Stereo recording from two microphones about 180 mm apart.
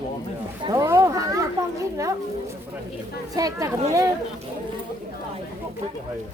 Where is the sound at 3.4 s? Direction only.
20° right (ahead or behind).